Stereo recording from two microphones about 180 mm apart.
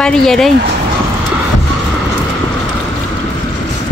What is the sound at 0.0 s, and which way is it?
Speech, 5° left (ahead or behind).